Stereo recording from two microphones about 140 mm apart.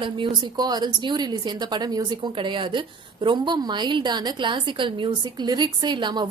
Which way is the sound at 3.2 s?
30° right (ahead or behind).